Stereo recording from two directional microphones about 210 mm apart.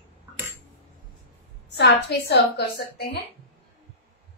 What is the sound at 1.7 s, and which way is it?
Speech, 50° left (ahead or behind).